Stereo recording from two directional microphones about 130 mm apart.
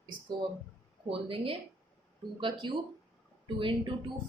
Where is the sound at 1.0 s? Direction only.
45° right (ahead or behind).